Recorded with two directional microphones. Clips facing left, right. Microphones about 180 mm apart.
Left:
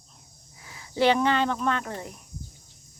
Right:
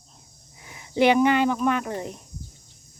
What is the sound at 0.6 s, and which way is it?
Speech, 20° right (ahead or behind).